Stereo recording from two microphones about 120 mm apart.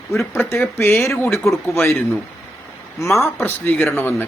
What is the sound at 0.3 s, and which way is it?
A man's voice, 20° left (ahead or behind).